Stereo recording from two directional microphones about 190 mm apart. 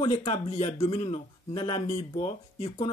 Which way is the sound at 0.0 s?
30° left (ahead or behind).